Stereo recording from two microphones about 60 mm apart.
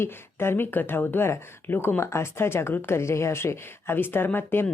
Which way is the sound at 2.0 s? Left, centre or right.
Left.